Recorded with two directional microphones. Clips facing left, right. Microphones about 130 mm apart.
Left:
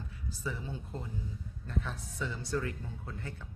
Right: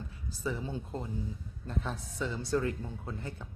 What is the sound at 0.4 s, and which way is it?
Speech, 25° right (ahead or behind).